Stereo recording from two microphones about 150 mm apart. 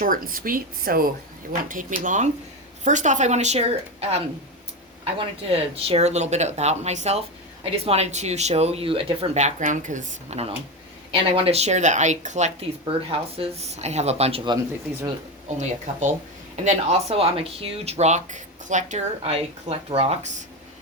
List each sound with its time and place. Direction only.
0.0 s speech: 70° right (ahead or behind)
1.6 s speech: 65° right (ahead or behind); by 4.2 s 45° right (ahead or behind)
5.5 s speech: 40° right (ahead or behind)
12.8 s speech: 40° right (ahead or behind)
15.5 s speech: 50° right (ahead or behind)